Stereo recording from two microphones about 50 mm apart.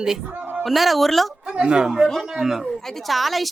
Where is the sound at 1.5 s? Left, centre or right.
Centre.